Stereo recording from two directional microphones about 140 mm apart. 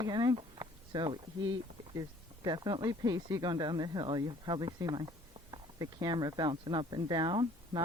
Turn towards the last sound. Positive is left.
turn(degrees=-35)  # may be behind; listen again after turning